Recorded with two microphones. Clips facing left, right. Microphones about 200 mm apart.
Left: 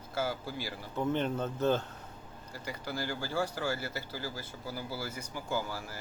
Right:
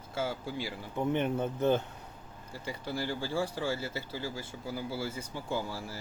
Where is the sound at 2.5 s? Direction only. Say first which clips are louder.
Right 2 dB; 25° right (ahead or behind).